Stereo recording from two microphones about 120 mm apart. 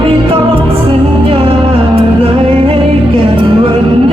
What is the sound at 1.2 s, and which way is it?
Music, 50° right (ahead or behind).